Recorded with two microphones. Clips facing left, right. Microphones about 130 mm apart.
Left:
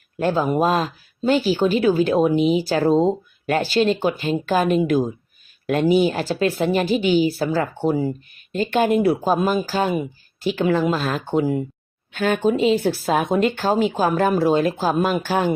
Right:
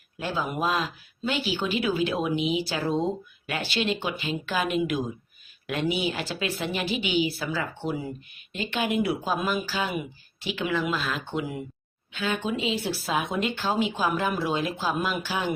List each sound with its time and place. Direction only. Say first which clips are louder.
0.2 s a woman's voice: left 10 dB; 45° left (ahead or behind)
12.1 s a woman's voice: left 9 dB; 50° left (ahead or behind)